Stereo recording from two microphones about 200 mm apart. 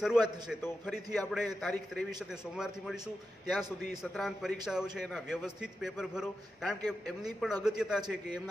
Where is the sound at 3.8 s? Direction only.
Centre (ahead or behind).